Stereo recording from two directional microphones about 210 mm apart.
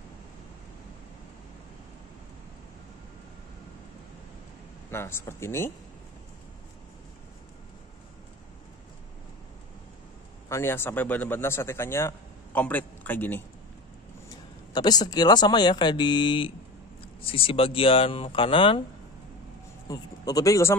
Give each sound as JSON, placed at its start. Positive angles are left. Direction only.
{"t": 4.9, "sound": "speech", "side_deg": 10}
{"t": 10.5, "sound": "speech", "side_deg": 10}
{"t": 14.7, "sound": "speech", "side_deg": 20}
{"t": 19.9, "sound": "speech", "side_deg": 15}